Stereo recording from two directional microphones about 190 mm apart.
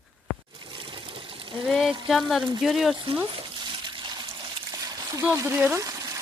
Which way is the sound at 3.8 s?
25° right (ahead or behind).